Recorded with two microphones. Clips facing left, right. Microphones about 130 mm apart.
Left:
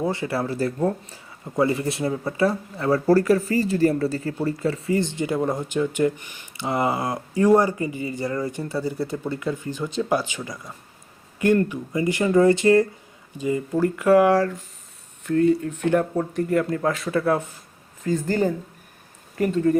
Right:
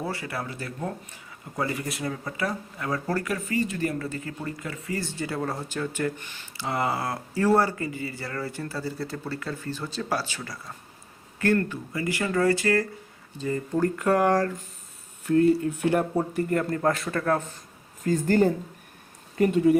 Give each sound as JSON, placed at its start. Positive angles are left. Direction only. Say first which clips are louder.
{"t": 0.0, "sound": "speech", "louder": "left 7 dB", "side_deg": 25}
{"t": 13.4, "sound": "speech", "louder": "left 3 dB", "side_deg": 10}
{"t": 18.0, "sound": "speech", "louder": "right 1 dB", "side_deg": -45}
{"t": 19.5, "sound": "speech", "louder": "even", "side_deg": -10}